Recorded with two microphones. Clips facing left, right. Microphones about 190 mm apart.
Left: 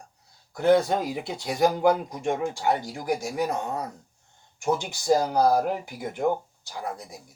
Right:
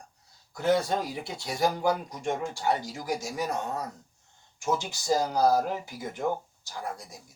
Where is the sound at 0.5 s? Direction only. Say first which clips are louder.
Left 5 dB; 60° left (ahead or behind).